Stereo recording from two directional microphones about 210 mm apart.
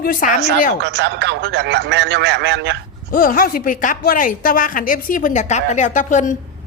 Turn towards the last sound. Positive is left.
turn(degrees=35)  # may be behind; listen again after turning